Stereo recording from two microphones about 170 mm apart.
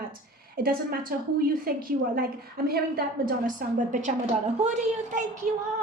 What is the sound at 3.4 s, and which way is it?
A child's voice, 50° right (ahead or behind).